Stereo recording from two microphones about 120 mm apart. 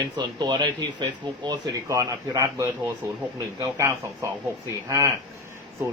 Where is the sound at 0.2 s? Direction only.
35° right (ahead or behind).